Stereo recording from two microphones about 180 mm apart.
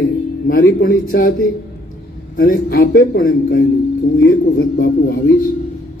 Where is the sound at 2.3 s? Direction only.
55° left (ahead or behind).